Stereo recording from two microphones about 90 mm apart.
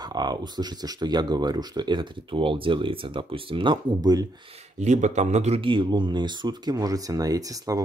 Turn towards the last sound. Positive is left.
turn(degrees=-40)  # may be behind; listen again after turning